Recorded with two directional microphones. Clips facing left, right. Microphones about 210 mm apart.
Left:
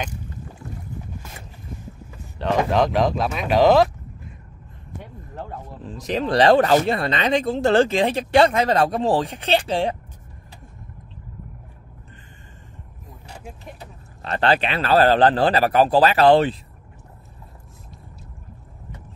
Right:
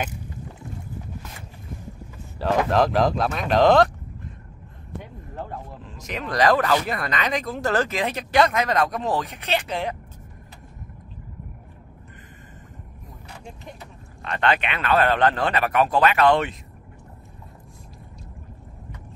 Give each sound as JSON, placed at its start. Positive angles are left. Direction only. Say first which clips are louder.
{"t": 2.3, "sound": "speech", "louder": "left 1 dB", "side_deg": -5}
{"t": 5.9, "sound": "speech", "louder": "left 9 dB", "side_deg": 35}
{"t": 13.7, "sound": "speech", "louder": "left 1 dB", "side_deg": 35}